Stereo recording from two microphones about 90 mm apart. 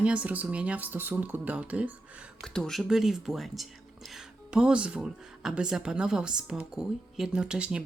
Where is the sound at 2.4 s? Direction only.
5° left (ahead or behind); by 7.8 s 10° right (ahead or behind).